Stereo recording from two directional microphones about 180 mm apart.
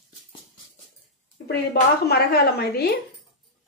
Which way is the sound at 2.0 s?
60° left (ahead or behind).